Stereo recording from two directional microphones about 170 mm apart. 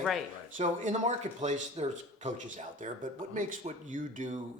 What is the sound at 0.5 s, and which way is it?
Speech, 45° right (ahead or behind).